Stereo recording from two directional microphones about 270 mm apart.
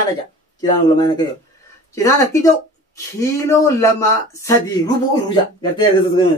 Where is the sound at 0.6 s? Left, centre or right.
Centre.